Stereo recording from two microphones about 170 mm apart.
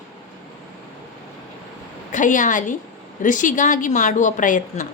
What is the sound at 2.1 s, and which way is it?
A woman's voice, 50° left (ahead or behind).